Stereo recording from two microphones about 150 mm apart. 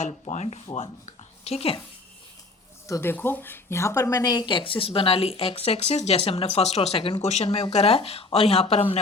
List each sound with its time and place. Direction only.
0.0 s speech: 50° left (ahead or behind)
2.8 s speech: 20° left (ahead or behind); by 9.0 s 40° left (ahead or behind)